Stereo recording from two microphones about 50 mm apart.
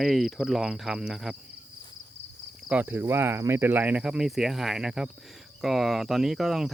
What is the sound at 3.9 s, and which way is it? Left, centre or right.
Speech, centre.